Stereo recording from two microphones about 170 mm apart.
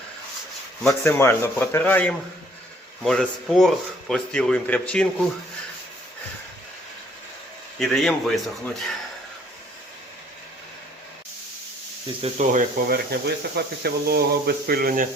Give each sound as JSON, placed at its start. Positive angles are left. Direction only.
{"t": 0.9, "sound": "speech", "side_deg": 15}
{"t": 7.8, "sound": "speech", "side_deg": 0}
{"t": 12.2, "sound": "speech", "side_deg": -50}
{"t": 13.1, "sound": "speech", "side_deg": -70}